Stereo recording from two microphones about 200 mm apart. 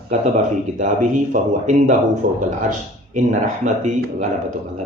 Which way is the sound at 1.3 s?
40° right (ahead or behind).